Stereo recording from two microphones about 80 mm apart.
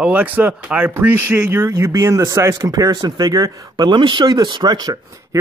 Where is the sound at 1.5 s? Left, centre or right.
Right.